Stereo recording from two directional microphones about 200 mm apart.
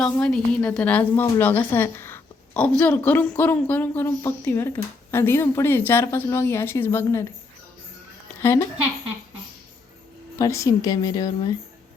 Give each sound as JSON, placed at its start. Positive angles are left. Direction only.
{"t": 0.0, "sound": "a woman's voice", "side_deg": 5}
{"t": 8.4, "sound": "a woman's voice", "side_deg": 10}
{"t": 10.3, "sound": "a woman's voice", "side_deg": 15}